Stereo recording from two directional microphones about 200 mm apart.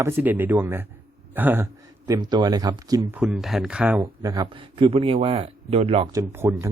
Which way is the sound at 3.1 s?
Centre (ahead or behind).